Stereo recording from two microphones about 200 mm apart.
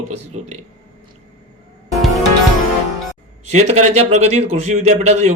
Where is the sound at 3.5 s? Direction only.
35° right (ahead or behind).